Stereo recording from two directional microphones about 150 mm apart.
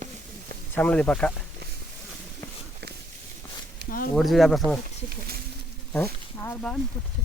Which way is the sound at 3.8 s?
70° left (ahead or behind).